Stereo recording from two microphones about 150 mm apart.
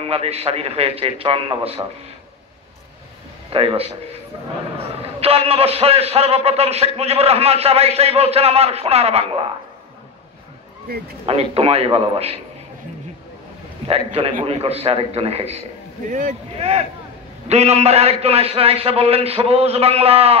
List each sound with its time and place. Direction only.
0.0 s a man's voice: 40° right (ahead or behind)
3.5 s a man's voice: 40° right (ahead or behind)
11.2 s a man's voice: 40° right (ahead or behind)
13.8 s a man's voice: 40° right (ahead or behind)
16.1 s speech: 60° right (ahead or behind)
16.5 s a man's voice: 45° right (ahead or behind)